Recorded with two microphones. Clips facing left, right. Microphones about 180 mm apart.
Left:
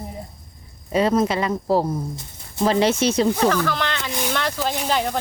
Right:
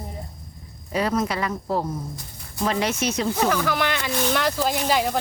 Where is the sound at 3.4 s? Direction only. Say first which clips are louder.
Left 2 dB; 10° right (ahead or behind).